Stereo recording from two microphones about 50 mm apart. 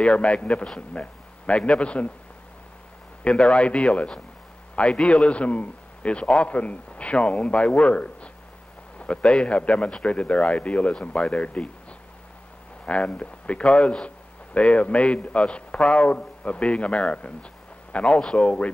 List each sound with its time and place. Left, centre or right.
0.0 s a man's voice: left
3.3 s a man's voice: centre
12.8 s a man's voice: left